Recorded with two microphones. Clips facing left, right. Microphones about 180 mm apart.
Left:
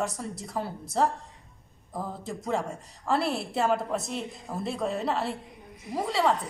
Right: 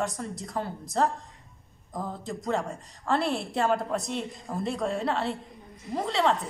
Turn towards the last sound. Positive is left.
turn(degrees=5)  # may be behind; listen again after turning